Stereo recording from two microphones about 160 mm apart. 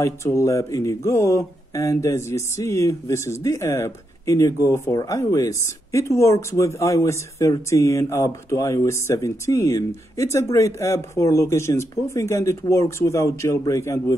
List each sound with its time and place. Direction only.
0.0 s speech: 20° left (ahead or behind)